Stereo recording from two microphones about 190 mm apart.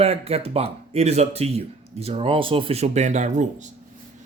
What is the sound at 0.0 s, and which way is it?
Speech, 30° right (ahead or behind).